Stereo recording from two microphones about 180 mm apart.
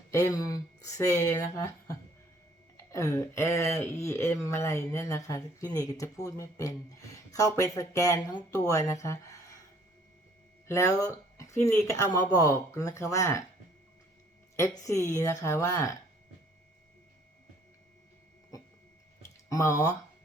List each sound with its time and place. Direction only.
0.1 s speech: 20° left (ahead or behind)
10.7 s speech: 15° left (ahead or behind)
14.8 s speech: 15° left (ahead or behind)
19.5 s speech: 20° left (ahead or behind)